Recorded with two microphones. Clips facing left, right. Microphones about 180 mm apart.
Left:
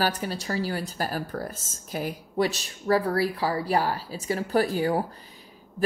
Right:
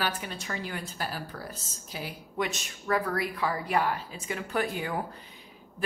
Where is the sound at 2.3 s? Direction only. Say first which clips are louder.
Left 6 dB; 35° left (ahead or behind).